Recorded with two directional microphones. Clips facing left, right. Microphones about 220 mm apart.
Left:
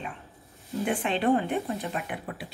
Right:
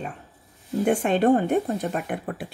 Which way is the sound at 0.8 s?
45° right (ahead or behind).